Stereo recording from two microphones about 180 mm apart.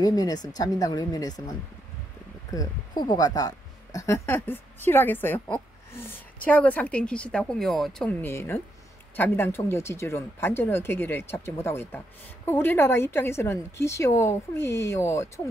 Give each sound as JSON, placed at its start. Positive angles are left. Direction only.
{"t": 0.0, "sound": "speech", "side_deg": 20}